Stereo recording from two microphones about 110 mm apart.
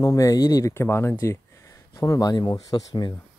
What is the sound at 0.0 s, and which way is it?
Speech, 30° left (ahead or behind).